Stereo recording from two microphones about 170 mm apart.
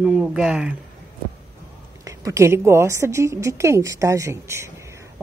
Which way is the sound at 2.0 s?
20° right (ahead or behind).